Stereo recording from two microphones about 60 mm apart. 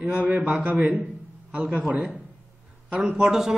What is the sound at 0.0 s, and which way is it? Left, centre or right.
Speech, centre.